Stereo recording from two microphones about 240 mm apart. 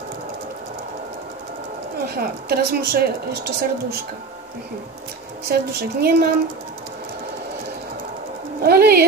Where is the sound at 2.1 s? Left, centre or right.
Right.